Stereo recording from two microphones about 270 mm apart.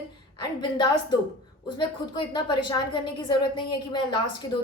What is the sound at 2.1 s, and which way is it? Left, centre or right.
A woman's voice, centre.